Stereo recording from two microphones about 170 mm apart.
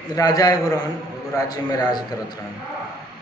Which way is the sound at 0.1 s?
20° left (ahead or behind).